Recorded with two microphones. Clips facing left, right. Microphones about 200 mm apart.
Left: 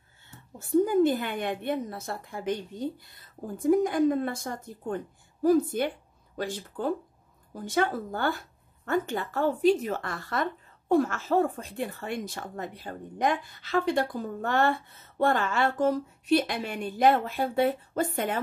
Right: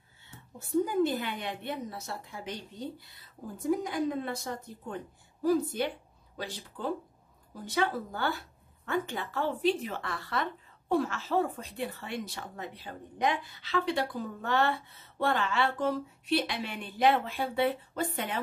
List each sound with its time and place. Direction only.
0.8 s speech: 50° left (ahead or behind)